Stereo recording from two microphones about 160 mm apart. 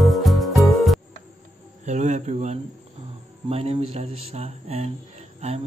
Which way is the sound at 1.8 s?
45° right (ahead or behind).